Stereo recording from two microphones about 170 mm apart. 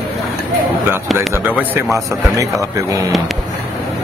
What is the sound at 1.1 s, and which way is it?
Speech, 15° right (ahead or behind).